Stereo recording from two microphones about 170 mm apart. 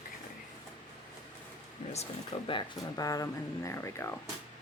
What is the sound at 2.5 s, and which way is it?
Speech, 25° left (ahead or behind).